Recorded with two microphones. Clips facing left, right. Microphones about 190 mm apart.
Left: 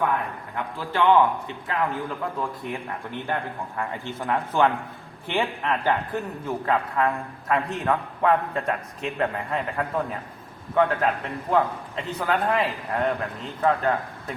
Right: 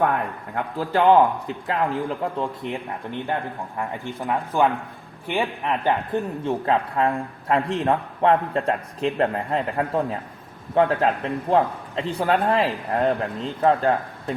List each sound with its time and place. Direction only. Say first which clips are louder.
0.5 s a man's voice: right 5 dB; 40° right (ahead or behind)
3.8 s speech: right 2 dB; 10° right (ahead or behind)
6.4 s a man's voice: right 1 dB; 30° right (ahead or behind)